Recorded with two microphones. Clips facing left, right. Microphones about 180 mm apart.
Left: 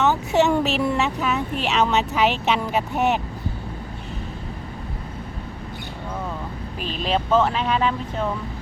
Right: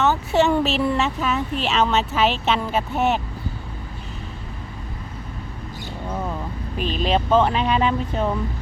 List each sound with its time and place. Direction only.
0.0 s speech: 15° left (ahead or behind)
6.7 s speech: centre (ahead or behind)